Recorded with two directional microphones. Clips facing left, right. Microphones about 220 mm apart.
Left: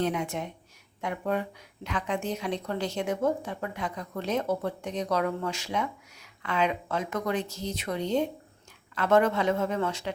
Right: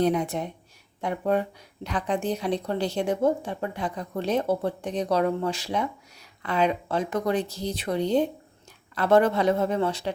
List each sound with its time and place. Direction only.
0.0 s a woman's voice: 35° right (ahead or behind)